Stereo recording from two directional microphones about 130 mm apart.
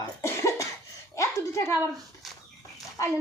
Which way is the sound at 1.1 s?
25° left (ahead or behind).